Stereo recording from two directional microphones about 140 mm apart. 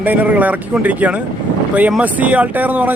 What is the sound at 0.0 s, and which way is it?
Speech, 10° right (ahead or behind).